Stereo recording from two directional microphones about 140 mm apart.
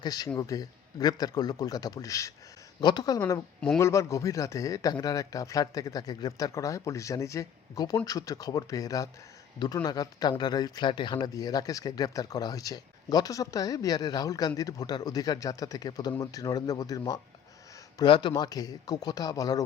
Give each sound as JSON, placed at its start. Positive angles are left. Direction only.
{"t": 0.0, "sound": "speech", "side_deg": 30}